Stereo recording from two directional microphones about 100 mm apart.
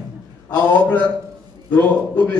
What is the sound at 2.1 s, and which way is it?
Speech, 15° left (ahead or behind).